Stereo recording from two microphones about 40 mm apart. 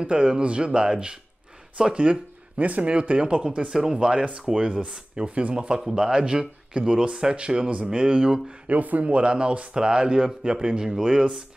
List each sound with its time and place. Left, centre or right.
0.0 s speech: right
2.6 s speech: right
2.9 s speech: right
3.7 s speech: centre
5.2 s speech: right
5.8 s speech: centre
8.6 s speech: right; by 11.2 s centre